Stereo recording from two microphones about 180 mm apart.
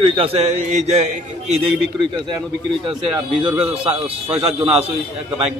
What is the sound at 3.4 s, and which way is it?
Speech, 10° right (ahead or behind).